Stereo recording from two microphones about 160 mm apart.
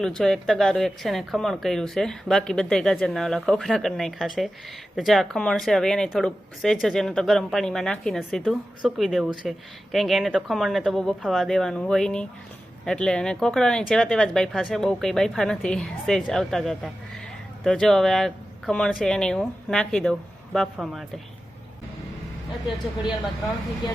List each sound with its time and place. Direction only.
0.0 s a woman's voice: centre (ahead or behind)